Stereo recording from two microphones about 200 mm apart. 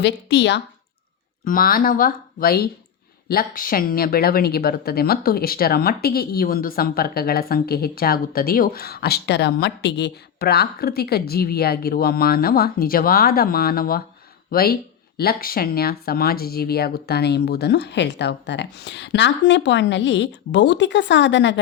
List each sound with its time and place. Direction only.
0.0 s speech: 60° left (ahead or behind)
1.5 s speech: 45° left (ahead or behind); by 21.6 s 60° left (ahead or behind)